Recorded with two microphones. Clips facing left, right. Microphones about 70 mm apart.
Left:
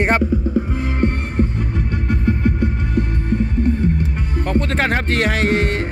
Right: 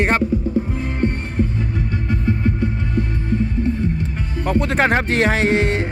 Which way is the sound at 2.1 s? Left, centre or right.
Left.